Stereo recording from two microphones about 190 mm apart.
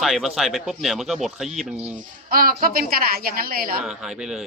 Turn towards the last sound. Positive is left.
turn(degrees=-5)  # may be behind; listen again after turning